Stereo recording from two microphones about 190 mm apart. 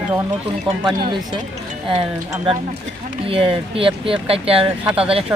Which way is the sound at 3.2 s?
30° right (ahead or behind).